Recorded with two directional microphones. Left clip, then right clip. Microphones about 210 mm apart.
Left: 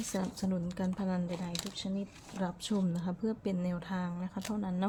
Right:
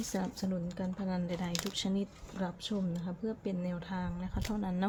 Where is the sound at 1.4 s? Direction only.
15° right (ahead or behind).